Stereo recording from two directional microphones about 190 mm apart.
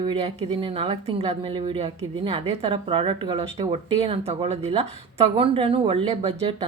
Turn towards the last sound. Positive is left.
turn(degrees=-30)  # may be behind; listen again after turning